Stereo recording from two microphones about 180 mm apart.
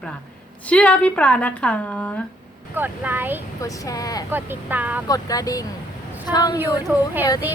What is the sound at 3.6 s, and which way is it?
Speech, 20° left (ahead or behind).